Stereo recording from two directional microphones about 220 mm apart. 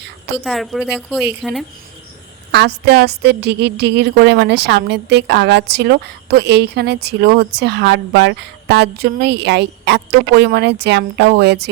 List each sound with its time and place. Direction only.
0.3 s a woman's voice: centre (ahead or behind)
2.5 s a woman's voice: 50° right (ahead or behind)